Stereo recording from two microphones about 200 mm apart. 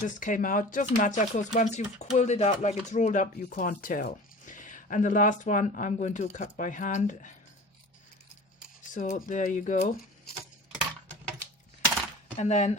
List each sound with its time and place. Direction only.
0.0 s speech: 40° left (ahead or behind)
8.9 s speech: 40° left (ahead or behind)
12.4 s speech: 35° left (ahead or behind)